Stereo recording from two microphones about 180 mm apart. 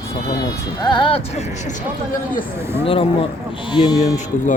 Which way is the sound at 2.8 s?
30° left (ahead or behind).